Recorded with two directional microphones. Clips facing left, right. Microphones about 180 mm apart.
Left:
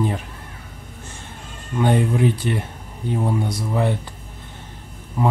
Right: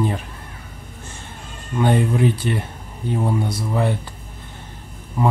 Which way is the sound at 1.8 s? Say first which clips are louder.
Even; 15° left (ahead or behind).